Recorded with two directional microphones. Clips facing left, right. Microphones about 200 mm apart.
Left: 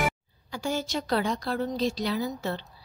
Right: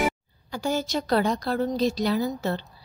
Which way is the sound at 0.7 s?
40° right (ahead or behind).